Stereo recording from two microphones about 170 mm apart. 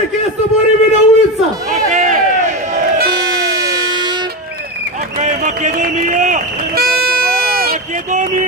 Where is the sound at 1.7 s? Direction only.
45° right (ahead or behind).